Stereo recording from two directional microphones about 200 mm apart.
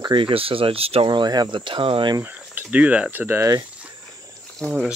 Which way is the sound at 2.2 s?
10° right (ahead or behind).